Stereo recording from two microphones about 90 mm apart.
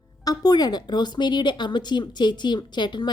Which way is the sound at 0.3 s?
45° left (ahead or behind).